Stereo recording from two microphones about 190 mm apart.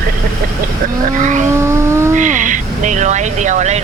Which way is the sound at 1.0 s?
40° right (ahead or behind).